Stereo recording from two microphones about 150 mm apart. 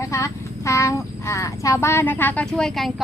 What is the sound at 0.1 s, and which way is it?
Child singing, 20° left (ahead or behind).